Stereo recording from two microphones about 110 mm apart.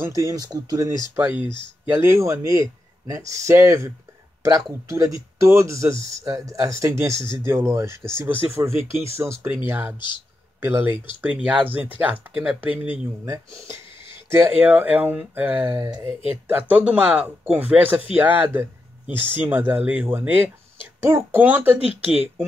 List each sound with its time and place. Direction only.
0.0 s speech: 30° right (ahead or behind)
9.9 s speech: 45° left (ahead or behind)
10.6 s speech: 20° right (ahead or behind)
13.2 s speech: 25° right (ahead or behind)
16.1 s speech: 55° left (ahead or behind)
16.4 s speech: 15° right (ahead or behind)